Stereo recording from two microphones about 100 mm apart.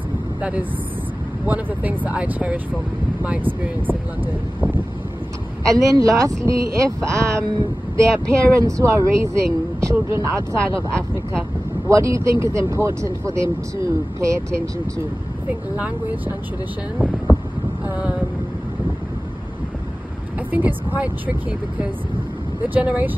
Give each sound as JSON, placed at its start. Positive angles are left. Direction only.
{"t": 0.4, "sound": "speech", "side_deg": -15}
{"t": 5.7, "sound": "speech", "side_deg": -35}
{"t": 11.9, "sound": "speech", "side_deg": -30}
{"t": 15.7, "sound": "speech", "side_deg": -15}
{"t": 17.8, "sound": "a sound", "side_deg": -15}
{"t": 20.5, "sound": "speech", "side_deg": -15}